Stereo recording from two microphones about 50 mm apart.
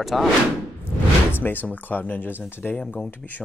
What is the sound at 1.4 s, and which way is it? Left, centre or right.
Speech, left.